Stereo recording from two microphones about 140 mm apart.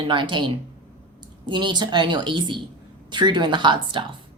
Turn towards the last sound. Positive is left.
turn(degrees=-35)  # may be behind; listen again after turning